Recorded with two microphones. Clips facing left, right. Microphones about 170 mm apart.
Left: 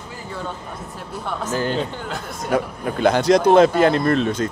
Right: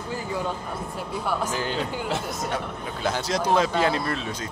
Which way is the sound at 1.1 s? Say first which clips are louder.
Left 2 dB; 5° right (ahead or behind).